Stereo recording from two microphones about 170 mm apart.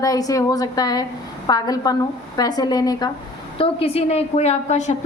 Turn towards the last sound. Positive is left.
turn(degrees=45)  # may be behind; listen again after turning